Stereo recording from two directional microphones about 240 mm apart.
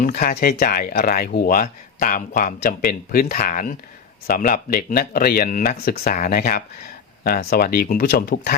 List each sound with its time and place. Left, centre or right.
0.0 s speech: left